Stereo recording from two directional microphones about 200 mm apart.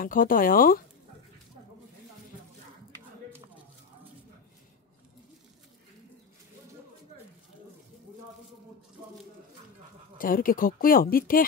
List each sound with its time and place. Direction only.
0.0 s a woman's voice: 45° left (ahead or behind)
10.1 s a woman's voice: 45° left (ahead or behind)